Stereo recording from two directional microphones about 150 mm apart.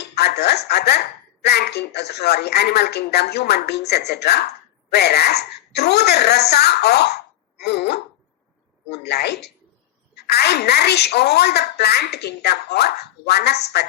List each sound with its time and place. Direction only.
0.1 s a woman's voice: 90° left
9.0 s a woman's voice: 90° left